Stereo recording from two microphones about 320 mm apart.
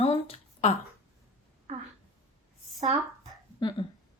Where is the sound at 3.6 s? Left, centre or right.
Centre.